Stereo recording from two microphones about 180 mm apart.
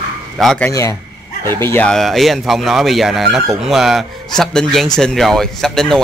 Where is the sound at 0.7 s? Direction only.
20° left (ahead or behind).